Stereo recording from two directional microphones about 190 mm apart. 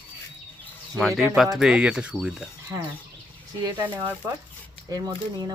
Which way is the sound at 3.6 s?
20° right (ahead or behind).